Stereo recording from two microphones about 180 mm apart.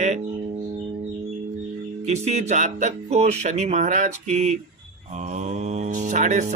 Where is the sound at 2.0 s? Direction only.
40° right (ahead or behind).